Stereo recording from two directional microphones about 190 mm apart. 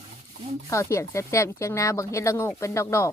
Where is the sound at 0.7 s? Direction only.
15° left (ahead or behind).